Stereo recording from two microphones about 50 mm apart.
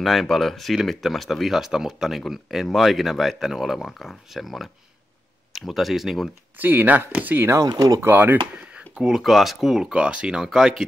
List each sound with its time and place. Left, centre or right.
0.0 s speech: centre
6.6 s speech: right
7.4 s speech: right
8.1 s speech: right
8.7 s speech: centre